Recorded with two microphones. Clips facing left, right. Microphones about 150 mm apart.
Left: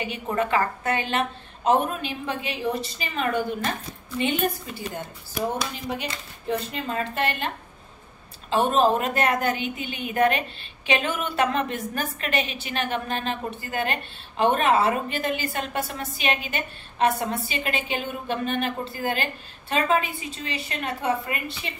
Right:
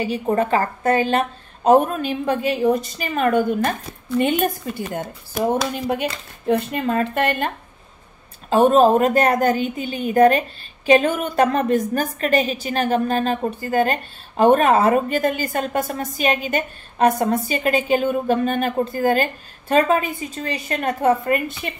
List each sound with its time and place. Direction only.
0.0 s a woman's voice: 35° right (ahead or behind)